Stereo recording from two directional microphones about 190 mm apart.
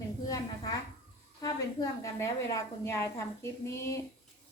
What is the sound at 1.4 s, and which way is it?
A woman's voice, 20° left (ahead or behind).